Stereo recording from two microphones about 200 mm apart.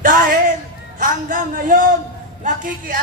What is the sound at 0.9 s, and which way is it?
A man's voice, 45° right (ahead or behind).